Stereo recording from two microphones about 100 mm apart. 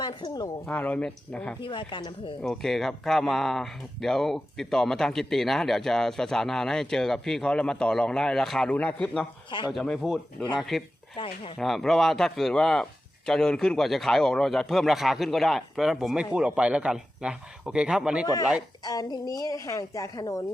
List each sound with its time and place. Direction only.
0.0 s a woman's voice: 45° left (ahead or behind)
0.7 s speech: 15° left (ahead or behind)
1.6 s a woman's voice: 55° left (ahead or behind)
2.4 s speech: 5° left (ahead or behind)
9.5 s a woman's voice: 50° left (ahead or behind)
9.7 s a man's voice: 5° left (ahead or behind)
18.9 s speech: 40° left (ahead or behind)